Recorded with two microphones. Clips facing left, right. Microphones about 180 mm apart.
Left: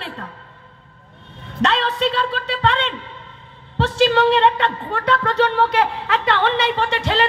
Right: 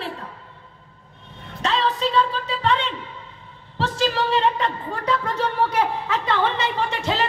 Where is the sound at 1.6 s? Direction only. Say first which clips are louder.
Left 3 dB; 70° left (ahead or behind).